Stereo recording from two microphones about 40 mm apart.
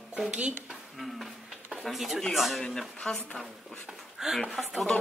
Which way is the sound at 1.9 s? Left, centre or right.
Centre.